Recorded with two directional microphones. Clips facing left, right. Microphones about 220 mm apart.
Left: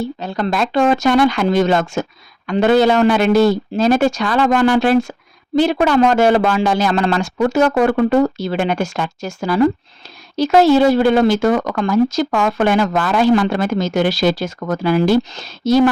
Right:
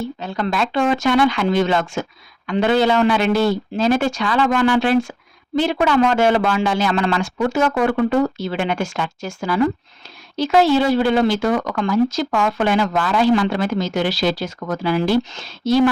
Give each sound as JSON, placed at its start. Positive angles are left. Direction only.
{"t": 0.0, "sound": "speech", "side_deg": 35}